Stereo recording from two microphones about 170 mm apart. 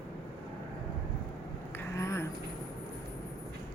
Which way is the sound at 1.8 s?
15° left (ahead or behind).